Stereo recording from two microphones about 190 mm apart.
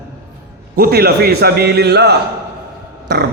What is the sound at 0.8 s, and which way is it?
A man's voice, 55° right (ahead or behind).